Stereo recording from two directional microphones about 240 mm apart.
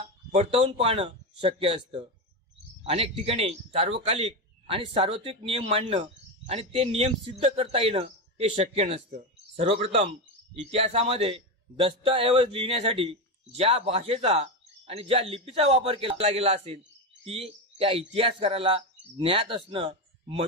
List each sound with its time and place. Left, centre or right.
0.3 s a man's voice: right